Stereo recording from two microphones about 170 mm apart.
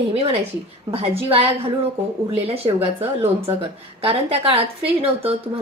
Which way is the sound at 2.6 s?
30° right (ahead or behind).